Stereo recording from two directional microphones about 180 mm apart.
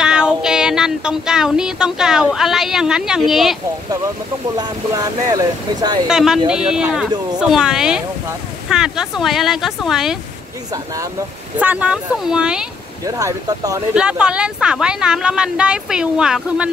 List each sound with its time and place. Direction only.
0.0 s child singing: 5° right (ahead or behind)
4.6 s speech: 20° right (ahead or behind)
6.0 s speech: 5° right (ahead or behind)
11.5 s speech: 10° right (ahead or behind)
13.0 s speech: 20° right (ahead or behind)
13.9 s speech: 5° right (ahead or behind)